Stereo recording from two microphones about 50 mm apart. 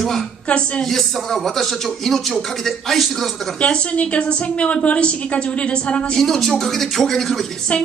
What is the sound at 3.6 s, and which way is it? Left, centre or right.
A woman's voice, left.